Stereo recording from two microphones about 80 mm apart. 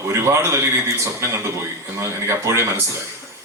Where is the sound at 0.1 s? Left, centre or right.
Right.